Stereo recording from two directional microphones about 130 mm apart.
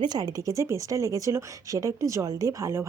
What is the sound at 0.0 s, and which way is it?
Speech, 35° right (ahead or behind).